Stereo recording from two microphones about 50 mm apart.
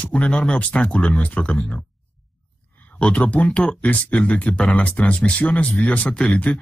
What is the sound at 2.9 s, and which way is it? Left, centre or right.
Speech, left.